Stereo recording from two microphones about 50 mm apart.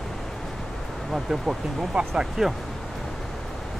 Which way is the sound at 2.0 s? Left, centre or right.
Right.